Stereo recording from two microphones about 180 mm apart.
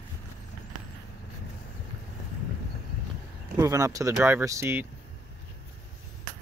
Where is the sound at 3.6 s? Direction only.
20° right (ahead or behind).